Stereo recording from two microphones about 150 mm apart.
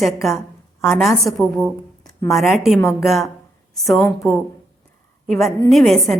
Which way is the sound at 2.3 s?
Centre (ahead or behind).